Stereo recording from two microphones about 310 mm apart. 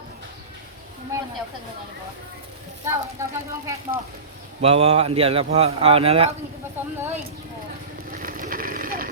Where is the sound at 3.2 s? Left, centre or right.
Centre.